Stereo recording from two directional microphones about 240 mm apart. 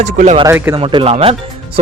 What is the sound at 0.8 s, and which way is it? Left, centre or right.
Speech, right.